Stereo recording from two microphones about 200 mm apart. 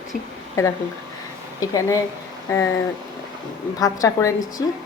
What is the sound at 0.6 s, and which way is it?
Speech, 15° left (ahead or behind).